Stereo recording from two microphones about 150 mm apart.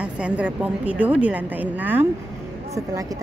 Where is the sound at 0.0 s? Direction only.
10° right (ahead or behind).